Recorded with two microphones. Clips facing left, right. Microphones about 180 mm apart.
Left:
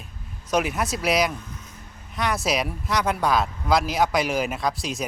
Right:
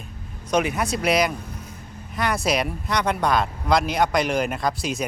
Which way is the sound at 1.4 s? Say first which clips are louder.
Right 4 dB; 35° right (ahead or behind).